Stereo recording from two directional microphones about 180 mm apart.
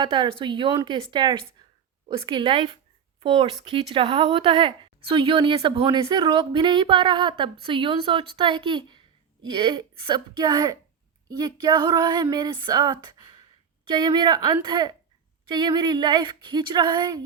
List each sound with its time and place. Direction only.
0.0 s speech: 25° right (ahead or behind)